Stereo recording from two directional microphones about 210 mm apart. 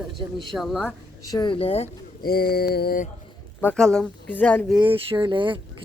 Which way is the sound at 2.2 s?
45° left (ahead or behind).